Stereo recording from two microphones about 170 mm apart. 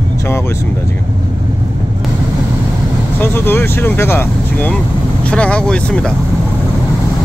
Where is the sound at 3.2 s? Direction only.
15° left (ahead or behind).